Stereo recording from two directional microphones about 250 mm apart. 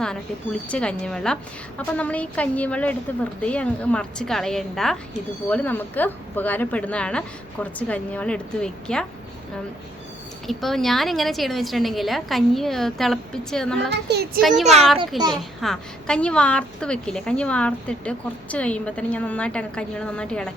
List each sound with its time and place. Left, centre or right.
0.7 s a child's voice: centre
10.4 s a child's voice: centre
13.9 s speech: right
14.6 s speech: right
15.3 s a child's voice: centre